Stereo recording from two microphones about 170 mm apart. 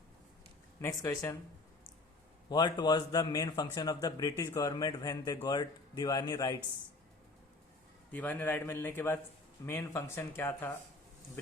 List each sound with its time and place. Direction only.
0.8 s speech: 20° left (ahead or behind)
2.5 s a man's voice: 25° left (ahead or behind)
8.1 s speech: 10° left (ahead or behind)